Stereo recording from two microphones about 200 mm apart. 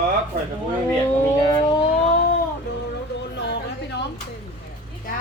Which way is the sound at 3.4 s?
60° left (ahead or behind).